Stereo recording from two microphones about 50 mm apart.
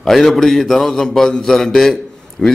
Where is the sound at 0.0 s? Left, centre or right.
Centre.